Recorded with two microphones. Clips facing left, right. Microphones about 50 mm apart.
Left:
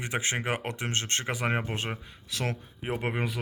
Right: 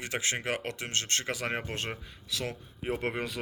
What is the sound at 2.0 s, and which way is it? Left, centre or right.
Speech, left.